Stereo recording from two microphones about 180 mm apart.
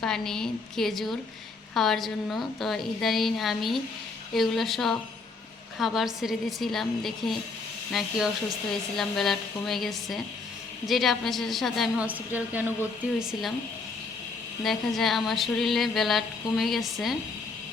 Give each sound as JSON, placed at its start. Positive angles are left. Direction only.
{"t": 0.0, "sound": "a woman's voice", "side_deg": 5}
{"t": 14.6, "sound": "a woman's voice", "side_deg": 0}